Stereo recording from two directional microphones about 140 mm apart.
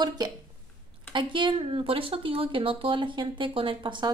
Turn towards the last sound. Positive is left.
turn(degrees=-35)  # may be behind; listen again after turning